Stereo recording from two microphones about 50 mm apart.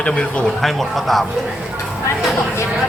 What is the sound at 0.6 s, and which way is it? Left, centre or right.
Speech, centre.